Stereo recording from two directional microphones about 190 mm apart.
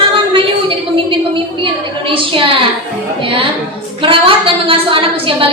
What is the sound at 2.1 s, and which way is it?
A woman's voice, 25° right (ahead or behind).